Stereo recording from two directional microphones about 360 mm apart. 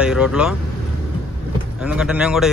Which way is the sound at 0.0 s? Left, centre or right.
Centre.